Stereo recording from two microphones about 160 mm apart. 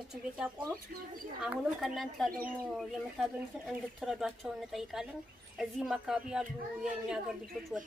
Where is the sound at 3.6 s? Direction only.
Centre (ahead or behind).